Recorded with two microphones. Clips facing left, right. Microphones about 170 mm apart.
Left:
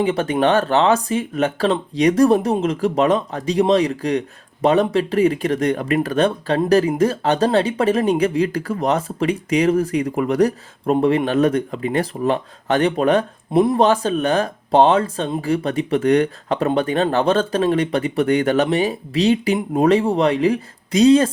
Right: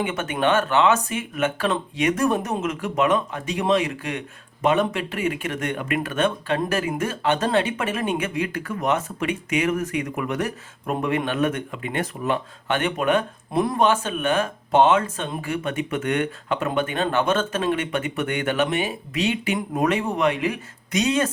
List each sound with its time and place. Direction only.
0.0 s speech: 35° left (ahead or behind)
13.5 s speech: 25° left (ahead or behind)
13.8 s speech: 35° left (ahead or behind)